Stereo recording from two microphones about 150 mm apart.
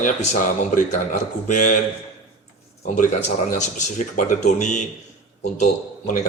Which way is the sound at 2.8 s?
55° left (ahead or behind).